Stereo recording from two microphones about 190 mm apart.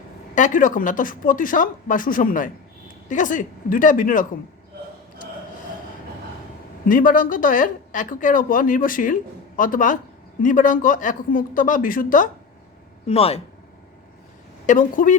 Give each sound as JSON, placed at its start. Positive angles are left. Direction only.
{"t": 0.3, "sound": "speech", "side_deg": 40}
{"t": 6.8, "sound": "speech", "side_deg": 45}
{"t": 13.1, "sound": "speech", "side_deg": 30}
{"t": 14.7, "sound": "speech", "side_deg": 45}